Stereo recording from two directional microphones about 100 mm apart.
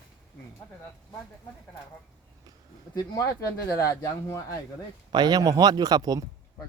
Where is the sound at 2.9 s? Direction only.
35° left (ahead or behind).